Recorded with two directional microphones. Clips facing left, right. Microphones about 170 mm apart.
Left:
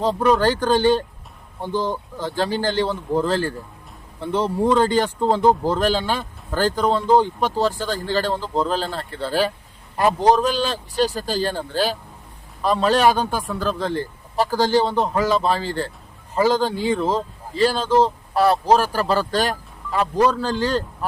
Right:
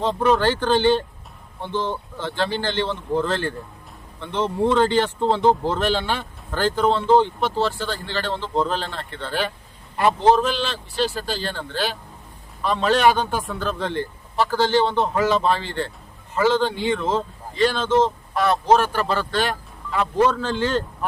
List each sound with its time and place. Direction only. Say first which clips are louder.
0.0 s speech: left 1 dB; 40° left (ahead or behind)